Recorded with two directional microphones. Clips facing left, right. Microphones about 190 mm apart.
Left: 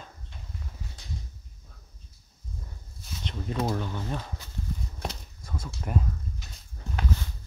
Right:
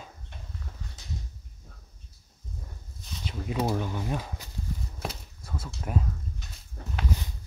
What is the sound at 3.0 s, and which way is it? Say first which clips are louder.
Speech: even; centre (ahead or behind).